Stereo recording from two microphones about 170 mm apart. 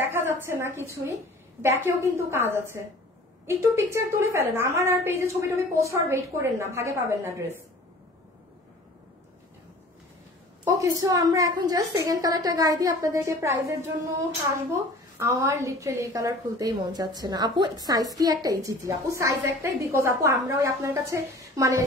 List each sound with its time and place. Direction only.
0.5 s a woman's voice: 15° right (ahead or behind)
10.6 s a woman's voice: 20° right (ahead or behind)